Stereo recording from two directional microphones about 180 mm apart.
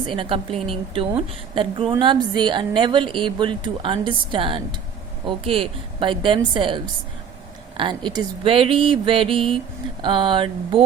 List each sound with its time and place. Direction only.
0.1 s a woman's voice: 30° right (ahead or behind)